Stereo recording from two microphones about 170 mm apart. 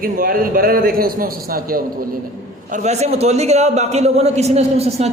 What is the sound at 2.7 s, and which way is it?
A man's voice, 40° right (ahead or behind).